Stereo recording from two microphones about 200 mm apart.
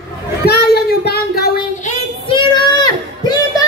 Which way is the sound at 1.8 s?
25° left (ahead or behind).